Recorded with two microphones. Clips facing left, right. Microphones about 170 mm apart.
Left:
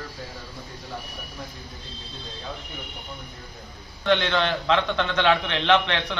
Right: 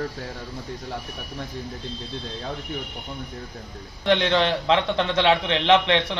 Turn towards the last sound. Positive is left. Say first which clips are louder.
# right 3 dB
turn(degrees=-25)  # may be behind; listen again after turning